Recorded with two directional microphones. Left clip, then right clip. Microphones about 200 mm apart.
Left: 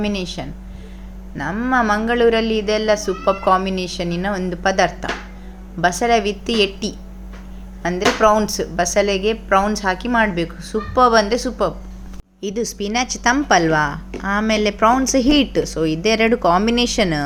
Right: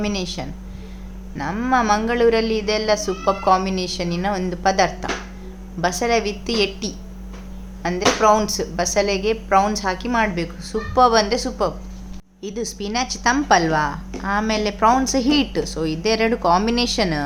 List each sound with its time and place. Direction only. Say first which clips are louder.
0.0 s a woman's voice: left 1 dB; 10° left (ahead or behind)